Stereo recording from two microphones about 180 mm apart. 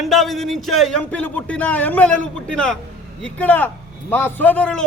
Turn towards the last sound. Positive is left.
turn(degrees=5)  # may be behind; listen again after turning